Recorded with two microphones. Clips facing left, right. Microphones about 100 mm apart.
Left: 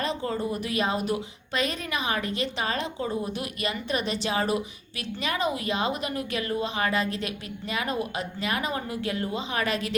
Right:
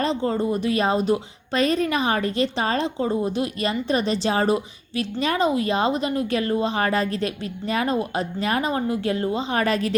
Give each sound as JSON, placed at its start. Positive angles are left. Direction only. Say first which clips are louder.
{"t": 0.0, "sound": "a woman's voice", "louder": "right 6 dB", "side_deg": -30}